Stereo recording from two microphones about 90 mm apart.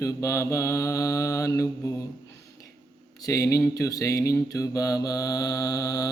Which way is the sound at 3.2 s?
40° left (ahead or behind).